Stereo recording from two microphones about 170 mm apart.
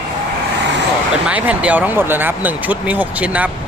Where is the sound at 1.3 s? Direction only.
10° right (ahead or behind).